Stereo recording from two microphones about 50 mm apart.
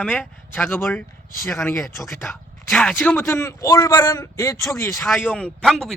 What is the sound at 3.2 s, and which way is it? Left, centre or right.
Speech, left.